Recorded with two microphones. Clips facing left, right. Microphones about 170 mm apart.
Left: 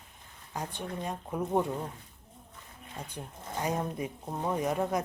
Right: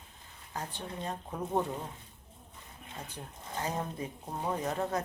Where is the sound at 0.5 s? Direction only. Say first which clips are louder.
Left 3 dB; 10° left (ahead or behind).